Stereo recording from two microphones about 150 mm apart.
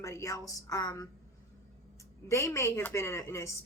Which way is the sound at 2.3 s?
20° left (ahead or behind).